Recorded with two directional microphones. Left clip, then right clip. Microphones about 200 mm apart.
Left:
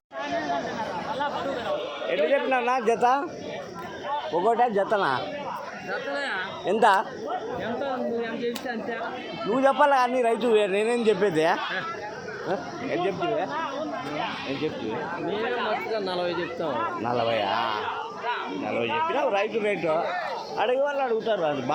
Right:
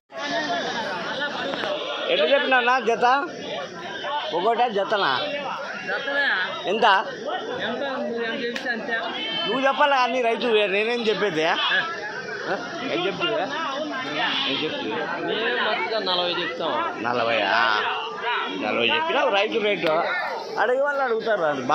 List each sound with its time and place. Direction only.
2.0 s a man's voice: 5° left (ahead or behind)
3.0 s speech: 25° left (ahead or behind)
4.4 s speech: 25° left (ahead or behind)
8.2 s a man's voice: 35° left (ahead or behind)
15.9 s speech: 75° left (ahead or behind)
17.2 s speech: 20° left (ahead or behind)
18.9 s a man's voice: 35° right (ahead or behind)
19.2 s a man's voice: 10° left (ahead or behind)